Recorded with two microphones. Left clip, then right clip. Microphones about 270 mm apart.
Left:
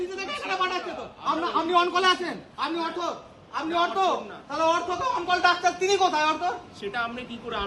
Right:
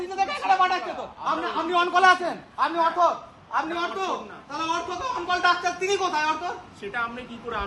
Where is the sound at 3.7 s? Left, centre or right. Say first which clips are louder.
Left 4 dB; centre.